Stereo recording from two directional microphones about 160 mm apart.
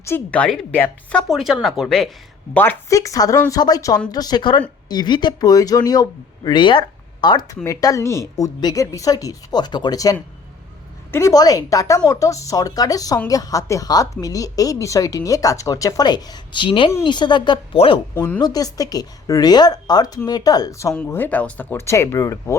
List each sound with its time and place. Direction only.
0.0 s speech: 10° left (ahead or behind); by 18.0 s 30° left (ahead or behind)
18.1 s speech: 10° left (ahead or behind)
18.3 s speech: 25° left (ahead or behind)